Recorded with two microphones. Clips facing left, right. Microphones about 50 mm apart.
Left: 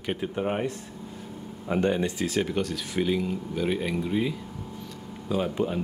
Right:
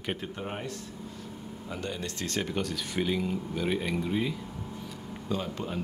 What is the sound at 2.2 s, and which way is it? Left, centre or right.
Speech, centre.